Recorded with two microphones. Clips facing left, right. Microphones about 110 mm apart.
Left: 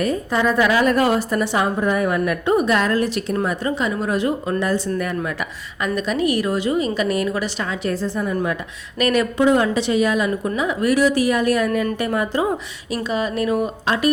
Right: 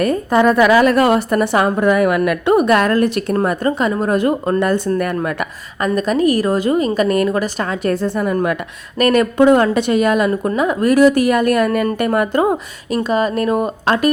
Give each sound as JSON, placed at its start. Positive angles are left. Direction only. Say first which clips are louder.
{"t": 0.0, "sound": "a woman's voice", "louder": "right 6 dB", "side_deg": -55}
{"t": 9.0, "sound": "a woman's voice", "louder": "right 5 dB", "side_deg": -50}